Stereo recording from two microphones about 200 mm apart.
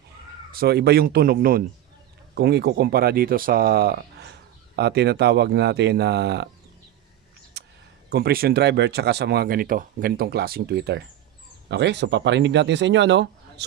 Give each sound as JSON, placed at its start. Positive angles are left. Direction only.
{"t": 0.5, "sound": "speech", "side_deg": -50}
{"t": 7.6, "sound": "a sound", "side_deg": -55}
{"t": 8.1, "sound": "speech", "side_deg": -50}